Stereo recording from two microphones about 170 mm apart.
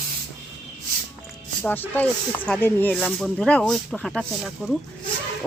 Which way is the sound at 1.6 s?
10° left (ahead or behind).